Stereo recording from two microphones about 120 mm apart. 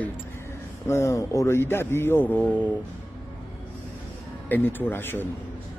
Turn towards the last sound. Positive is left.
turn(degrees=20)  # may be behind; listen again after turning